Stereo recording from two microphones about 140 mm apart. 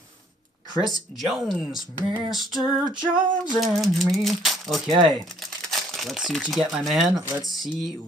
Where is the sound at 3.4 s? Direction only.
Centre (ahead or behind).